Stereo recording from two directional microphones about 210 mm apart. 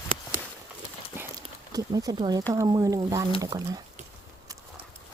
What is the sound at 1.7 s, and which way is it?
Speech, 15° right (ahead or behind).